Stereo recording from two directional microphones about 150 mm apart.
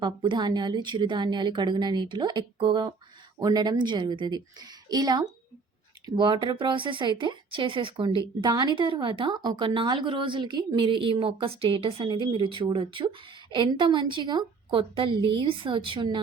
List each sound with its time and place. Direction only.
0.0 s a woman's voice: 30° right (ahead or behind)